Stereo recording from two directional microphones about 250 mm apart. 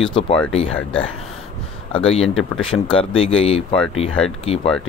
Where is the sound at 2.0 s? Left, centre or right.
Left.